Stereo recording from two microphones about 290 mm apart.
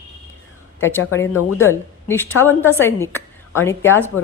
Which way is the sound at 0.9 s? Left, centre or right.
Centre.